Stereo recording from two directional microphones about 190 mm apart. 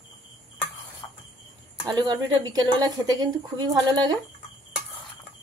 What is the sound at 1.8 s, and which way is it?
Speech, 20° right (ahead or behind).